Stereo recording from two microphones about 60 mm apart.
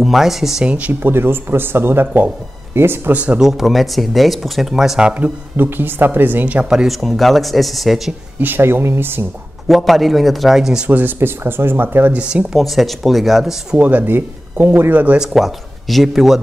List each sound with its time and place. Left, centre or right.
0.0 s speech: centre
0.7 s speech: right
1.0 s speech: right
3.1 s speech: right
3.3 s speech: centre
5.6 s speech: right
6.9 s speech: centre
8.4 s speech: right
9.7 s speech: centre
10.9 s speech: right
12.1 s speech: right
12.5 s speech: centre
13.7 s speech: right
15.1 s speech: centre